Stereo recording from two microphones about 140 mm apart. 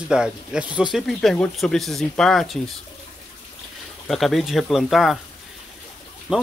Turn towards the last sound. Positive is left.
turn(degrees=-5)  # may be behind; listen again after turning